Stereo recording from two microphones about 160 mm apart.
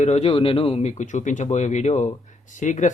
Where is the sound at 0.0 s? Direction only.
45° left (ahead or behind).